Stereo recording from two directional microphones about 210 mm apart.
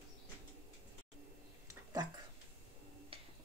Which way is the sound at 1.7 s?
15° right (ahead or behind).